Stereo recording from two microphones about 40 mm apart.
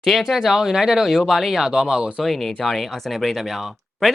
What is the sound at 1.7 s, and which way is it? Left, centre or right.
Speech, centre.